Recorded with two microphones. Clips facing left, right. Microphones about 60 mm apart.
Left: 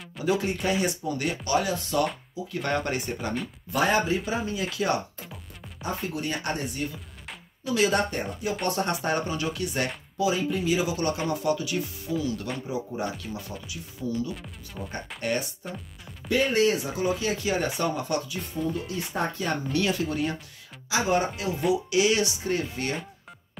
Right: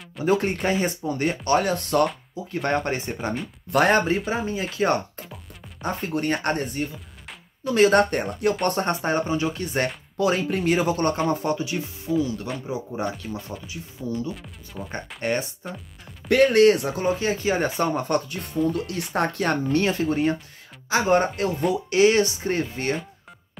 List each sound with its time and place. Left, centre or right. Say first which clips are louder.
0.2 s speech: right 4 dB; right
2.4 s speech: right 3 dB; right
3.7 s speech: right 5 dB; right
4.3 s speech: right 3 dB; right
8.6 s speech: right 3 dB; right
10.1 s speech: right 3 dB; right
11.2 s speech: right 2 dB; right
12.6 s speech: right 3 dB; right
14.3 s speech: right 1 dB; centre
15.2 s speech: right 3 dB; right
16.3 s speech: right 7 dB; right
19.1 s speech: right 6 dB; right
19.7 s speech: right 4 dB; right
20.9 s speech: right 5 dB; right